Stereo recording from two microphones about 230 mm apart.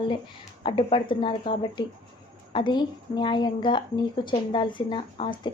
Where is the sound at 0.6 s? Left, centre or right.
Left.